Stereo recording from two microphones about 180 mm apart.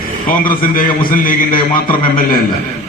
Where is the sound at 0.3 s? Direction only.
50° left (ahead or behind).